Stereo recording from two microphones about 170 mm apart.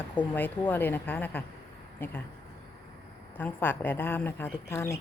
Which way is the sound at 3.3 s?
10° left (ahead or behind).